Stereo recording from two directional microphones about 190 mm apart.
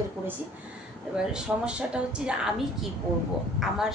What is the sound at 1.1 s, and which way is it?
A woman's voice, 5° right (ahead or behind).